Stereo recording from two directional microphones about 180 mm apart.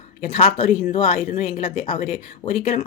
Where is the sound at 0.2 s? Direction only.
40° left (ahead or behind).